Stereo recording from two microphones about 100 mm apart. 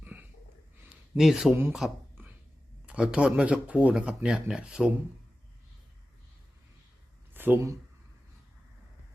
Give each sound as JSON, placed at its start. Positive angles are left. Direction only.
{"t": 0.0, "sound": "snort", "side_deg": -15}
{"t": 1.1, "sound": "speech", "side_deg": -5}
{"t": 7.3, "sound": "speech", "side_deg": -20}